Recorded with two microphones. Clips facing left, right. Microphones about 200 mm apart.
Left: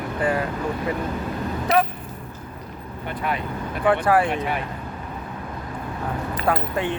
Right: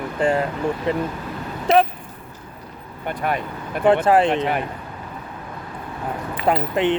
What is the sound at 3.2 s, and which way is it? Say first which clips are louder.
Speech: right 3 dB; 50° right (ahead or behind).